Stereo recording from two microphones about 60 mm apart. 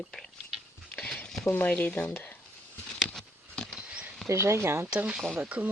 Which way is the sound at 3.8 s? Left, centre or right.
Centre.